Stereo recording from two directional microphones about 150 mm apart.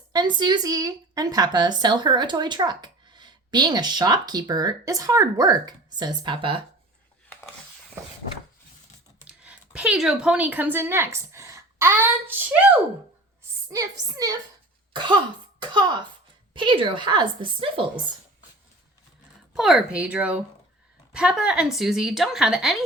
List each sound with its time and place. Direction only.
0.1 s a woman's voice: 30° right (ahead or behind)
9.2 s speech: 10° right (ahead or behind)
13.7 s a woman's voice: 25° right (ahead or behind)
16.6 s a woman's voice: 35° right (ahead or behind)
19.5 s speech: 5° right (ahead or behind)